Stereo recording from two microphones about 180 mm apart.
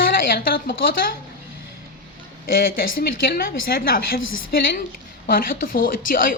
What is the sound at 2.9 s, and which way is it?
A woman's voice, 55° left (ahead or behind).